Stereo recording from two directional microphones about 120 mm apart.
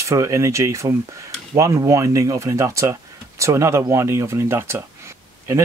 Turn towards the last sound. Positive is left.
turn(degrees=-25)  # may be behind; listen again after turning